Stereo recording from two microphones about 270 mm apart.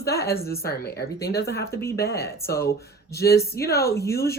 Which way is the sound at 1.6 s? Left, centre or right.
Centre.